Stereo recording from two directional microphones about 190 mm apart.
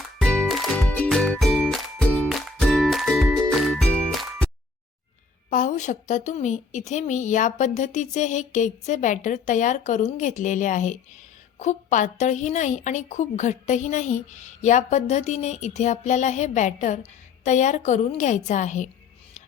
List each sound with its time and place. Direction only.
0.2 s music: 5° left (ahead or behind)
5.5 s a woman's voice: 40° left (ahead or behind)